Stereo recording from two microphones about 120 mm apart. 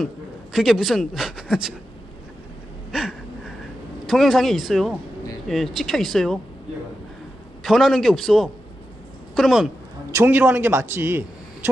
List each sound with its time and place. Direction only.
0.0 s a man's voice: centre (ahead or behind)
2.9 s a sound: centre (ahead or behind)
4.0 s speech: centre (ahead or behind)
7.6 s a woman's voice: centre (ahead or behind)
10.1 s a man's voice: 20° right (ahead or behind)